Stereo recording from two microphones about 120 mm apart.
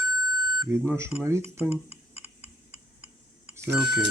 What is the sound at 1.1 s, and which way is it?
Tick-tock, 20° right (ahead or behind).